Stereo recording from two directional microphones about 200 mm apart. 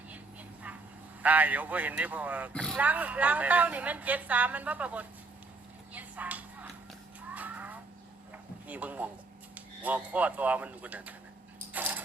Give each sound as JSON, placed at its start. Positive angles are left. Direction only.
{"t": 1.2, "sound": "a woman's voice", "side_deg": -10}
{"t": 2.5, "sound": "speech", "side_deg": 5}
{"t": 2.7, "sound": "a woman's voice", "side_deg": -10}
{"t": 5.9, "sound": "a sound", "side_deg": -10}
{"t": 9.6, "sound": "a woman's voice", "side_deg": -5}
{"t": 11.7, "sound": "a sound", "side_deg": -10}